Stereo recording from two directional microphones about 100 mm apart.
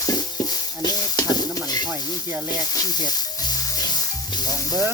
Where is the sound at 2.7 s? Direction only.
40° left (ahead or behind).